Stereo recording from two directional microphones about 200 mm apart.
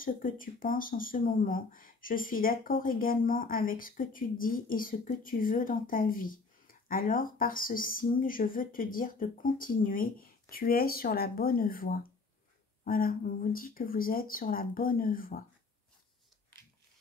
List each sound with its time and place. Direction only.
0.0 s speech: 45° left (ahead or behind)